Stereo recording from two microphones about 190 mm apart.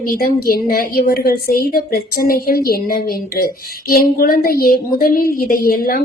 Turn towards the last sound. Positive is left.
turn(degrees=50)  # may be behind; listen again after turning